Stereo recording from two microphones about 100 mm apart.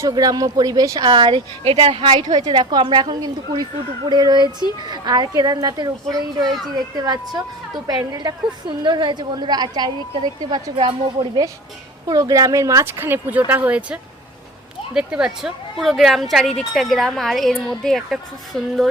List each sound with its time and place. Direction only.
0.1 s a woman's voice: 40° right (ahead or behind)
12.0 s speech: 35° right (ahead or behind); by 18.9 s centre (ahead or behind)